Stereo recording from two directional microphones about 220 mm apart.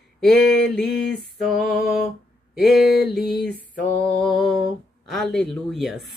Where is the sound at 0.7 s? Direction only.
5° left (ahead or behind).